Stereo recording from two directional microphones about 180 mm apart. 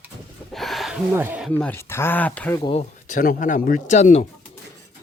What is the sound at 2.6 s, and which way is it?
Speech, 30° left (ahead or behind).